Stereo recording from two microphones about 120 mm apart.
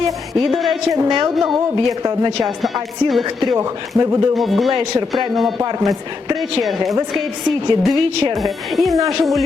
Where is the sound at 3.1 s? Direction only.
Centre (ahead or behind).